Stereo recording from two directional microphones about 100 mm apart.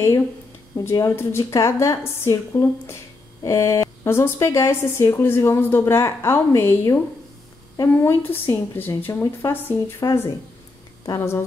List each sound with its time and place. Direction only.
0.7 s a woman's voice: 35° left (ahead or behind)